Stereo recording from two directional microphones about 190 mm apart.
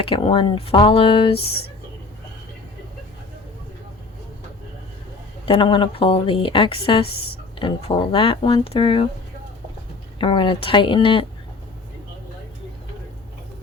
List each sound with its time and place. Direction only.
0.0 s a woman's voice: 30° left (ahead or behind)
5.5 s a woman's voice: 25° left (ahead or behind)
10.2 s a woman's voice: 25° left (ahead or behind)